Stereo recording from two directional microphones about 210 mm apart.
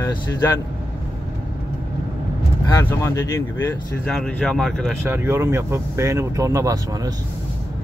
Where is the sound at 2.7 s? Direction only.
15° left (ahead or behind).